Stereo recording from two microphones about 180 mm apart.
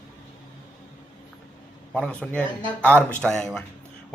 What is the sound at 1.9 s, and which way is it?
A man's voice, 5° left (ahead or behind).